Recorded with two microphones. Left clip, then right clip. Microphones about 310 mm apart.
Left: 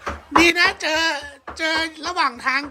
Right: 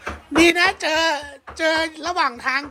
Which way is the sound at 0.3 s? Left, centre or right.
Centre.